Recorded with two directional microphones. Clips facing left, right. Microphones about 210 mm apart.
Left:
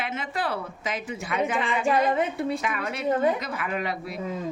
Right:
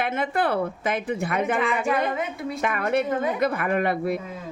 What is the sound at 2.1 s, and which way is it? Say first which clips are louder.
Speech: left 3 dB; 30° left (ahead or behind).